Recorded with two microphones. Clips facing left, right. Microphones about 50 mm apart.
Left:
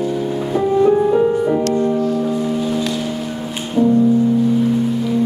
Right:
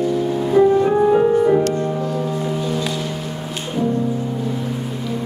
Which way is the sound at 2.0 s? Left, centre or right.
Centre.